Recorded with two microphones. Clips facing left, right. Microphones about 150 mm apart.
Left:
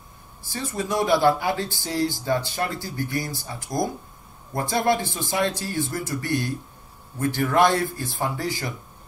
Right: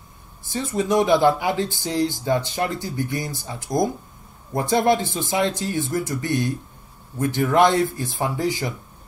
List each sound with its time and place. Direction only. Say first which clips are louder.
0.5 s speech: right 5 dB; 20° right (ahead or behind)